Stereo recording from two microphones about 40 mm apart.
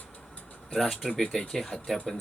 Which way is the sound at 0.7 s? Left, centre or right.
Centre.